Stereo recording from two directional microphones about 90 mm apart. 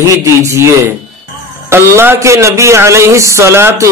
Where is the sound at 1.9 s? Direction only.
30° right (ahead or behind).